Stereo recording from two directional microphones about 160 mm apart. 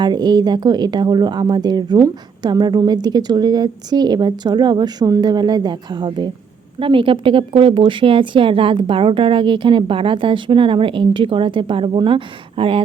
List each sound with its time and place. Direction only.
0.0 s a woman's voice: 25° right (ahead or behind)